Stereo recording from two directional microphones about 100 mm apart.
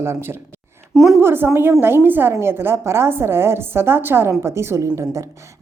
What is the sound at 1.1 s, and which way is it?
A woman's voice, 25° right (ahead or behind).